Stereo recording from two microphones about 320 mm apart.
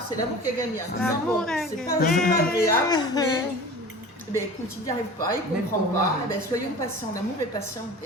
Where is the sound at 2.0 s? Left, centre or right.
Left.